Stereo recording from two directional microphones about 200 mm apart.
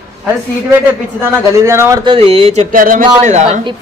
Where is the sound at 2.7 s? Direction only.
45° right (ahead or behind).